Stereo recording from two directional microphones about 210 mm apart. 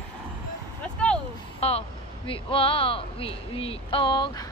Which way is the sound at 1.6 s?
30° left (ahead or behind).